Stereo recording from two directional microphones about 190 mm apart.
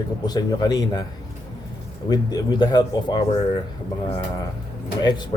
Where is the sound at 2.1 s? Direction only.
20° left (ahead or behind).